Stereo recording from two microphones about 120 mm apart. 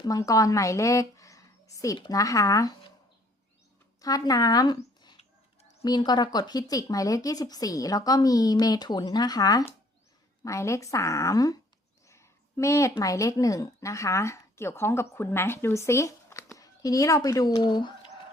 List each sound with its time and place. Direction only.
0.0 s a woman's voice: 30° left (ahead or behind)
4.0 s speech: 30° left (ahead or behind)
12.0 s a sound: 25° left (ahead or behind)
13.0 s speech: 30° left (ahead or behind)